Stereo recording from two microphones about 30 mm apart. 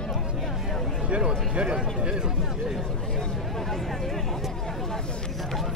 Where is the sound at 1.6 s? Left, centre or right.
Right.